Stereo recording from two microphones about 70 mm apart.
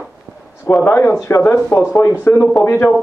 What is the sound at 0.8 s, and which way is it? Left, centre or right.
Speech, left.